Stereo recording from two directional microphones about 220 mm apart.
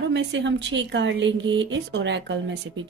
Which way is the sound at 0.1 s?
55° right (ahead or behind).